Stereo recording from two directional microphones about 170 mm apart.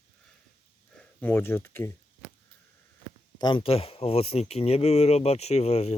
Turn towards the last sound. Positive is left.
turn(degrees=40)  # may be behind; listen again after turning